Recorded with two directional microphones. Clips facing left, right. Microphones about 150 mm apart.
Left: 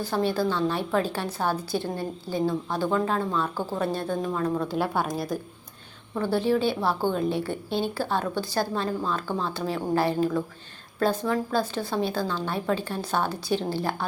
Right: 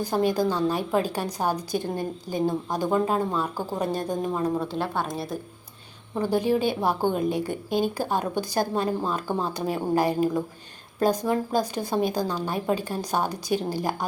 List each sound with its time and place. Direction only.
0.0 s a woman's voice: 15° right (ahead or behind)
4.6 s a woman's voice: 5° left (ahead or behind)
6.1 s a woman's voice: 15° right (ahead or behind)